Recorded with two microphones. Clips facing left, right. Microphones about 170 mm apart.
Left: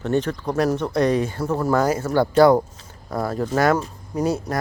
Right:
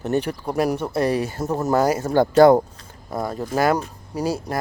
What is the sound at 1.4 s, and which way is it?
Speech, 20° right (ahead or behind).